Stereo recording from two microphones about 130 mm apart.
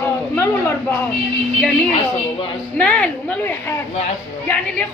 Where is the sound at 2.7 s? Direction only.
10° left (ahead or behind).